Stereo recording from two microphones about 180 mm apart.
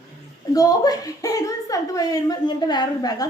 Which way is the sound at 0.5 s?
20° left (ahead or behind).